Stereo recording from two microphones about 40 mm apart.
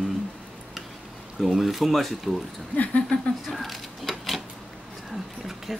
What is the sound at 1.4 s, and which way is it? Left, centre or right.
Speech, centre.